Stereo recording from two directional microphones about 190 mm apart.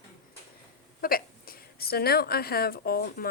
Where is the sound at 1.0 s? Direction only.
50° left (ahead or behind).